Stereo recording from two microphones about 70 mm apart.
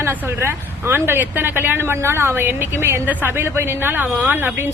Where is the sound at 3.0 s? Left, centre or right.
Right.